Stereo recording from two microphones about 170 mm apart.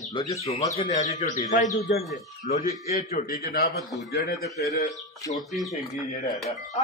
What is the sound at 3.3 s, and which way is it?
Speech, 60° left (ahead or behind).